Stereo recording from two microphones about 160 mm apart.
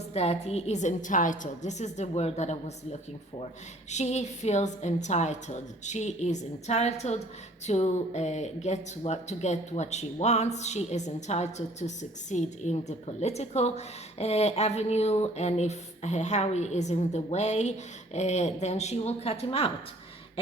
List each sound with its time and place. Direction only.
0.1 s speech: 40° left (ahead or behind)